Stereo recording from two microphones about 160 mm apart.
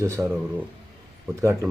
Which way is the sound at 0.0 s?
20° right (ahead or behind).